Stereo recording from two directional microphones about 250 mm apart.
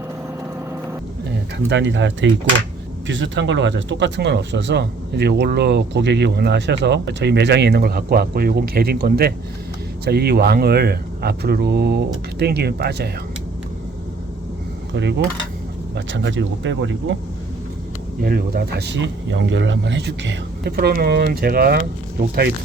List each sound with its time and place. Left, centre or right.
1.5 s speech: right
14.9 s speech: right
18.2 s speech: right